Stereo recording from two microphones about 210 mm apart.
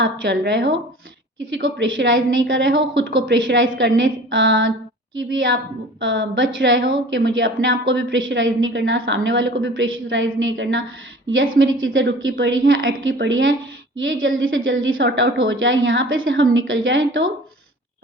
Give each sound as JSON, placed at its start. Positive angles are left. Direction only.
{"t": 0.0, "sound": "a woman's voice", "side_deg": -60}